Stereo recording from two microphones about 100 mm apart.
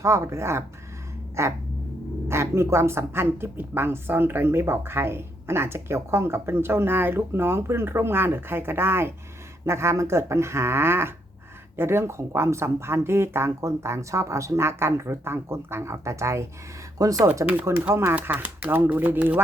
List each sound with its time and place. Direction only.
0.0 s speech: 30° right (ahead or behind)
18.1 s speech: 20° right (ahead or behind)